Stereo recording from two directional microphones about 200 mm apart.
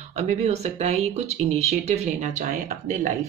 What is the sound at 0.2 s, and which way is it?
Speech, 35° right (ahead or behind).